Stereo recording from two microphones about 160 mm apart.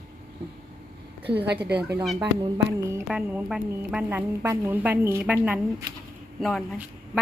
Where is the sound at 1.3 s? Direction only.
90° right.